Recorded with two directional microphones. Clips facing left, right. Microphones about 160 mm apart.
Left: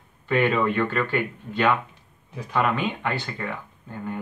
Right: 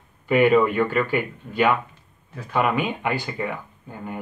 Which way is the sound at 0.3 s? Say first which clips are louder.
Right 5 dB; 10° right (ahead or behind).